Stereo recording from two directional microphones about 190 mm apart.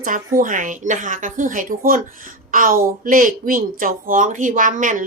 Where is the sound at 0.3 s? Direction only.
45° right (ahead or behind).